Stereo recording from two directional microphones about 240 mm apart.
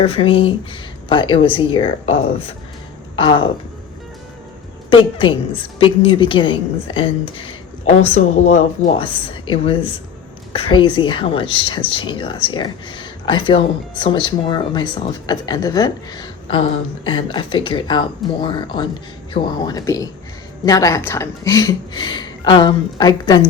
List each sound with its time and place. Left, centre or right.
0.0 s speech: left
4.9 s a woman's voice: left